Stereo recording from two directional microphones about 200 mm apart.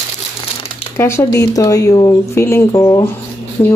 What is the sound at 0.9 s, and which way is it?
Speech, 15° left (ahead or behind).